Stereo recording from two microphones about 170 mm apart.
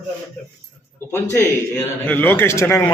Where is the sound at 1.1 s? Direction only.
15° left (ahead or behind).